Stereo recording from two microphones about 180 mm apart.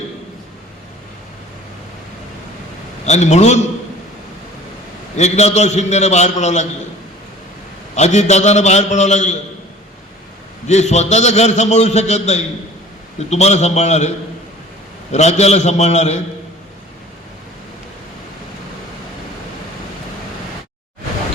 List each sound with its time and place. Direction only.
3.1 s a man's voice: 40° left (ahead or behind)
5.1 s a man's voice: 40° left (ahead or behind)
7.9 s a man's voice: 40° left (ahead or behind)
10.7 s a man's voice: 40° left (ahead or behind)
15.1 s a man's voice: 40° left (ahead or behind)